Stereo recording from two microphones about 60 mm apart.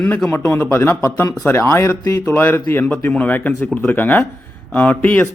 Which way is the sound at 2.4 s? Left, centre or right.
Left.